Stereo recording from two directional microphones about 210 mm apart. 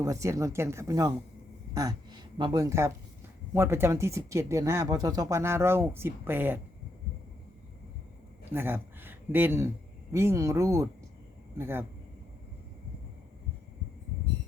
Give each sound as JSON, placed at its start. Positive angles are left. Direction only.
{"t": 0.0, "sound": "speech", "side_deg": -15}
{"t": 8.5, "sound": "speech", "side_deg": -10}